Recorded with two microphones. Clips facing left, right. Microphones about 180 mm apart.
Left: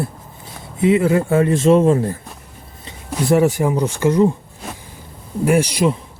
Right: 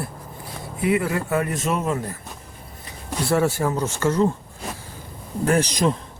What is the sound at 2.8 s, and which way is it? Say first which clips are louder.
Speech: left 6 dB; 15° left (ahead or behind).